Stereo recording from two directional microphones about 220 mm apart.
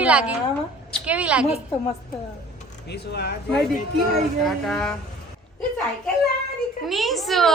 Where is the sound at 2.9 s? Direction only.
50° left (ahead or behind).